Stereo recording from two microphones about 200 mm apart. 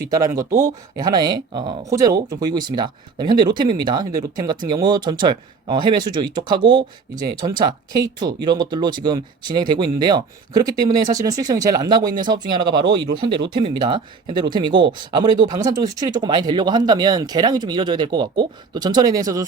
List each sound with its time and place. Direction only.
0.1 s speech: 15° right (ahead or behind)